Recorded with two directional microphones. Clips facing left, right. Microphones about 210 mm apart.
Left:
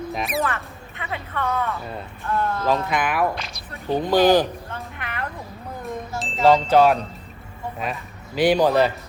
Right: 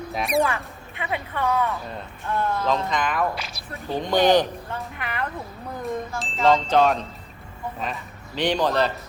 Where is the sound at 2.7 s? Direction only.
10° left (ahead or behind).